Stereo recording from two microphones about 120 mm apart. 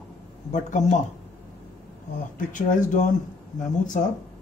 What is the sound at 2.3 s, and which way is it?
Speech, 90° left.